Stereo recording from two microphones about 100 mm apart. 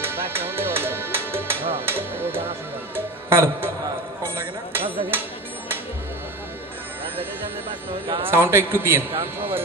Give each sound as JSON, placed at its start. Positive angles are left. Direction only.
{"t": 0.0, "sound": "music", "side_deg": -25}
{"t": 4.4, "sound": "a sound", "side_deg": -20}
{"t": 8.3, "sound": "a man's voice", "side_deg": -25}